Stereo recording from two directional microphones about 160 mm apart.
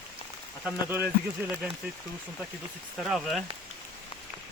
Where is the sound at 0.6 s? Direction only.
10° right (ahead or behind).